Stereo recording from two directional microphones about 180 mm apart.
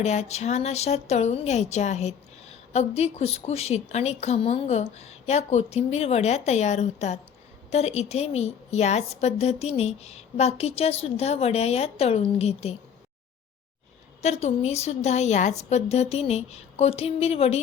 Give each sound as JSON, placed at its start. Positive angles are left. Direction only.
{"t": 0.0, "sound": "speech", "side_deg": 40}
{"t": 14.2, "sound": "speech", "side_deg": 35}